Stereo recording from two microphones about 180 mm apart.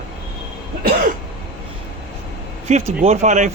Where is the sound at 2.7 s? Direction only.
40° right (ahead or behind).